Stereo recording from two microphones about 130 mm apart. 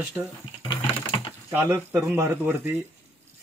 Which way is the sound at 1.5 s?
25° right (ahead or behind).